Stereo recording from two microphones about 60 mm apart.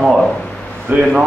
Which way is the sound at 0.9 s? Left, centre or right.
Right.